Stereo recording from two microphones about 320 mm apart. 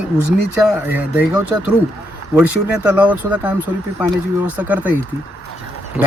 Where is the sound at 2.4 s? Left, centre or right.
Centre.